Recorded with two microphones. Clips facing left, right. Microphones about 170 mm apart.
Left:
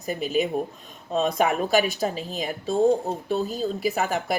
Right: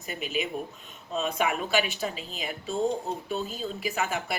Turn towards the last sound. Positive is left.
turn(degrees=40)  # may be behind; listen again after turning